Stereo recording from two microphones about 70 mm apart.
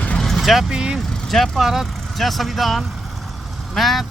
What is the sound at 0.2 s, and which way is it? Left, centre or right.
Vehicle, centre.